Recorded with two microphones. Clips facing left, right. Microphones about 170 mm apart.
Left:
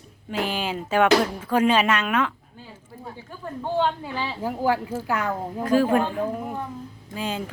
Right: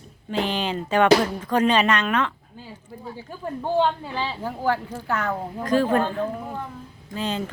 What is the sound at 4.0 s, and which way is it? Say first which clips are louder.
A woman's voice: even; 10° left (ahead or behind).